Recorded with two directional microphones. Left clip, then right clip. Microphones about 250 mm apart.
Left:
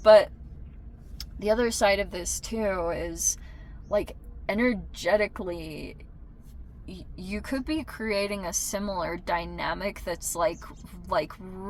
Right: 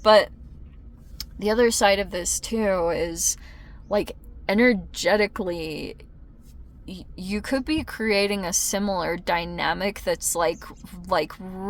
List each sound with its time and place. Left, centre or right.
0.0 s speech: right